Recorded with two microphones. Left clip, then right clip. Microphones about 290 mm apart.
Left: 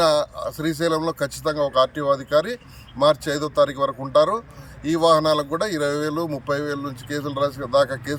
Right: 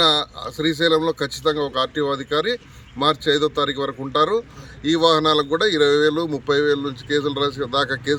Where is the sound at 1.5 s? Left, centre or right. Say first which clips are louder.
Left 2 dB; centre.